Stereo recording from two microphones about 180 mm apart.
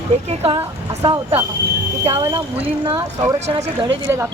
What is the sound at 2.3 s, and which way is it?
Speech, 25° right (ahead or behind).